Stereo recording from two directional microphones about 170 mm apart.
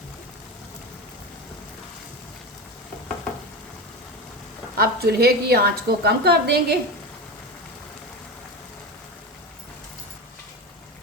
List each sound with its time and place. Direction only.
4.8 s a woman's voice: 70° right (ahead or behind)